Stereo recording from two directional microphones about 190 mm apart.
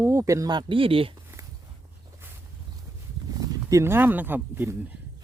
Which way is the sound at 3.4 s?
15° right (ahead or behind).